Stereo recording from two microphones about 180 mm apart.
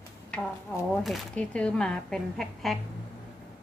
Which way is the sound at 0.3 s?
Centre (ahead or behind).